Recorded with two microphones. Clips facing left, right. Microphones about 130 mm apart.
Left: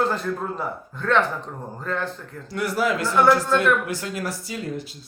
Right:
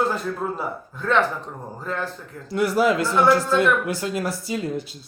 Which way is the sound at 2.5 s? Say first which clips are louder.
Right 4 dB; 25° right (ahead or behind).